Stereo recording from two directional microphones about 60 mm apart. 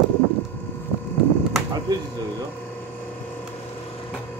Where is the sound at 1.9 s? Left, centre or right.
Right.